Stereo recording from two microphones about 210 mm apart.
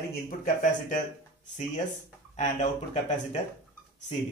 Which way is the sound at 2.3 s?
35° left (ahead or behind).